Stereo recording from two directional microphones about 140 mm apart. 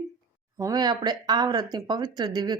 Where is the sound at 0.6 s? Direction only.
30° right (ahead or behind).